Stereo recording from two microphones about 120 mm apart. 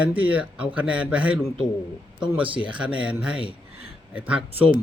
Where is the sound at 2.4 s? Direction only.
45° right (ahead or behind).